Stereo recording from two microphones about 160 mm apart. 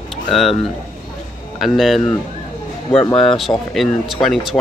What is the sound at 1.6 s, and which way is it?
Speech, centre (ahead or behind).